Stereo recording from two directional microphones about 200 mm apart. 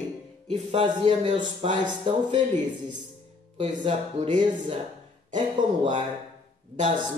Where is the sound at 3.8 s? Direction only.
25° right (ahead or behind).